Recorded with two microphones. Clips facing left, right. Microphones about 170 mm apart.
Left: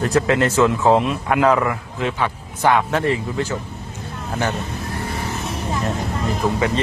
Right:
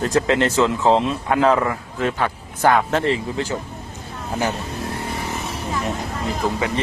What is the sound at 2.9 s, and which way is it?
Speech, 25° right (ahead or behind).